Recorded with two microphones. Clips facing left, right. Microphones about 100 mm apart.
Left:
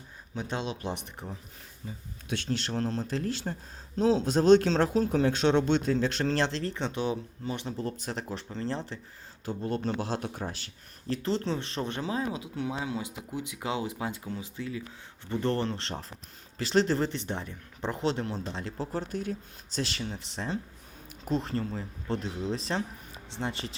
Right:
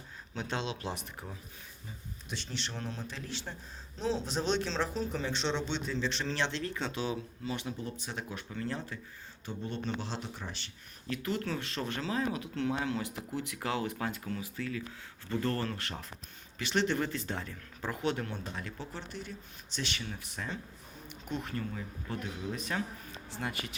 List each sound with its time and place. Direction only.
0.3 s speech: 15° left (ahead or behind)
2.5 s speech: 45° left (ahead or behind)
6.7 s speech: 20° left (ahead or behind)
7.8 s speech: 40° left (ahead or behind)
9.5 s speech: 45° left (ahead or behind)
11.1 s speech: 30° left (ahead or behind)